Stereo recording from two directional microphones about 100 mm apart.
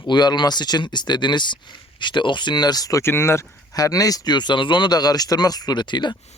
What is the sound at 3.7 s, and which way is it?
Speech, 35° left (ahead or behind).